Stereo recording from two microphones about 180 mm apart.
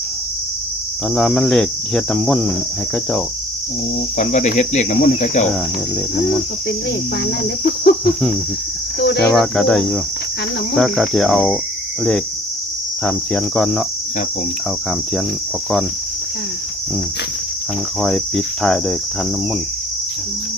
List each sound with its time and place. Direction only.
1.1 s cricket: 5° left (ahead or behind)
4.2 s speech: 40° left (ahead or behind)
7.3 s cricket: 60° left (ahead or behind)
9.0 s cricket: 65° left (ahead or behind)
9.3 s cricket: 5° left (ahead or behind)
13.1 s cricket: 5° left (ahead or behind)
18.0 s cricket: 5° left (ahead or behind)